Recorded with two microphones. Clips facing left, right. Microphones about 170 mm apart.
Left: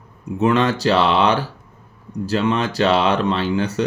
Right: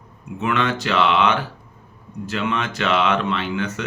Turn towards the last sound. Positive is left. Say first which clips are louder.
# left 4 dB
turn(degrees=35)  # may be behind; listen again after turning